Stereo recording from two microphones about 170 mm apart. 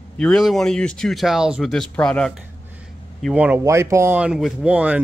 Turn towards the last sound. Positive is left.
turn(degrees=-5)  # may be behind; listen again after turning